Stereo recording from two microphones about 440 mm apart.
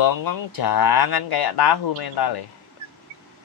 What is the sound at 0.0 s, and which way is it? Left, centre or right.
Speech, left.